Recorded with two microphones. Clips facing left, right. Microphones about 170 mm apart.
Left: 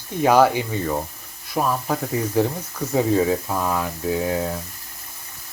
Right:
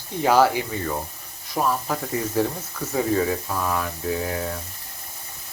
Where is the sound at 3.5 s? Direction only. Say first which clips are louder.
Left 2 dB; 20° left (ahead or behind).